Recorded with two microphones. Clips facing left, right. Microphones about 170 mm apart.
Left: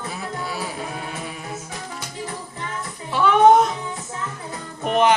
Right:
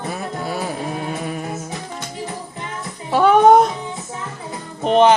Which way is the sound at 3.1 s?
40° right (ahead or behind).